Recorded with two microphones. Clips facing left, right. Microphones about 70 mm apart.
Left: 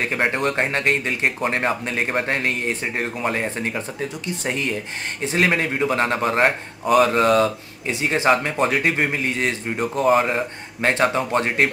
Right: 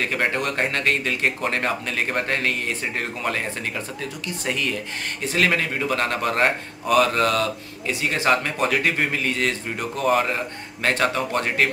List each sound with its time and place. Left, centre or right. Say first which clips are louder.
0.0 s speech: left 2 dB; left